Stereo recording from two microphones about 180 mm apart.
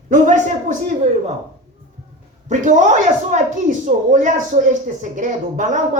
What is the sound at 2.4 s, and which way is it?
Speech, 45° right (ahead or behind).